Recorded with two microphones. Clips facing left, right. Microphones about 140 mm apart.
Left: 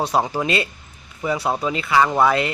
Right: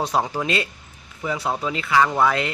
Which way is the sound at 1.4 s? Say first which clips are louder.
Left 3 dB; 30° left (ahead or behind).